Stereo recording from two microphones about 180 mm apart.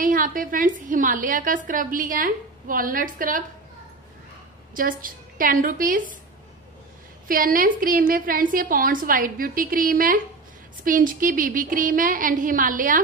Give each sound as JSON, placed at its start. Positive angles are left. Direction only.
{"t": 0.0, "sound": "a woman's voice", "side_deg": -50}
{"t": 4.7, "sound": "a woman's voice", "side_deg": -50}
{"t": 7.2, "sound": "a woman's voice", "side_deg": -50}